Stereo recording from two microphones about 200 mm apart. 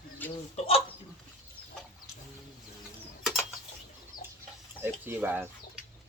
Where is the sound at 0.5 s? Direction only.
30° left (ahead or behind).